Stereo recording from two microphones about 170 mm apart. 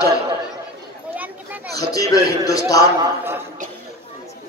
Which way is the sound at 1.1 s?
10° right (ahead or behind).